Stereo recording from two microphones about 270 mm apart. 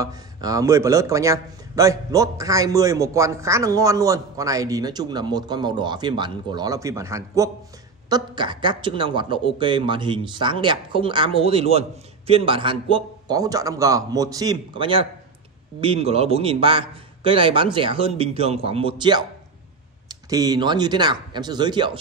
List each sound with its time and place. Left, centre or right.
0.0 s a man's voice: centre